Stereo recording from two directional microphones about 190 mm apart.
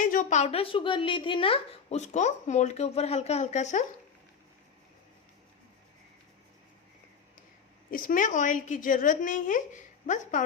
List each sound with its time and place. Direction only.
0.0 s speech: 45° left (ahead or behind)
7.9 s a woman's voice: 45° left (ahead or behind)